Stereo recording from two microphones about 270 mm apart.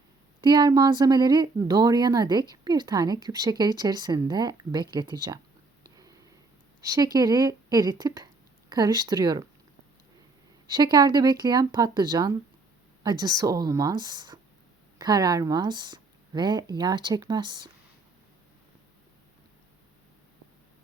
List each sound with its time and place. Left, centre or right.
0.4 s speech: centre
6.8 s speech: centre
10.7 s speech: centre